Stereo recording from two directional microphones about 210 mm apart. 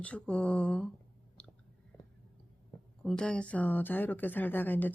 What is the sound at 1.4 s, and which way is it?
Chewing, 5° left (ahead or behind).